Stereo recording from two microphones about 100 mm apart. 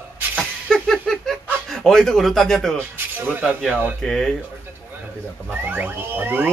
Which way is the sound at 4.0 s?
5° left (ahead or behind).